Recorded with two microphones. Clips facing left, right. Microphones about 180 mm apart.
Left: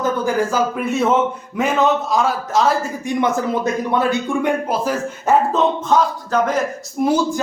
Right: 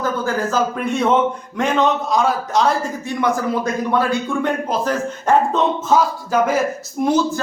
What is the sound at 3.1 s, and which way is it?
Speech, 20° left (ahead or behind).